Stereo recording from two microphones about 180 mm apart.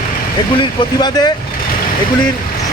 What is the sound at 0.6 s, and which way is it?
Speech, 25° left (ahead or behind).